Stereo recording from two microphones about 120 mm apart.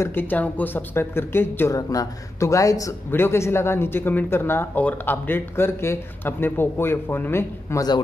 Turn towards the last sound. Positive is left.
turn(degrees=20)  # may be behind; listen again after turning